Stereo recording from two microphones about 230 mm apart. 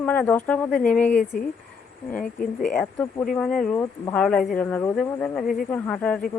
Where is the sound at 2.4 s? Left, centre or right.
Left.